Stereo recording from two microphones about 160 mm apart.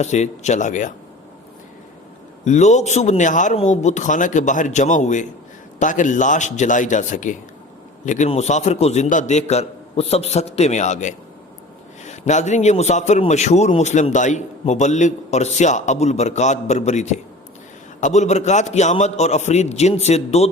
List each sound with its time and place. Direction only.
0.0 s a man's voice: 45° left (ahead or behind)
2.4 s a man's voice: 45° left (ahead or behind)